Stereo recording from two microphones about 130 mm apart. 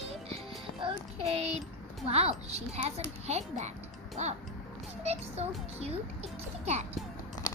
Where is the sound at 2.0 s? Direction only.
50° right (ahead or behind).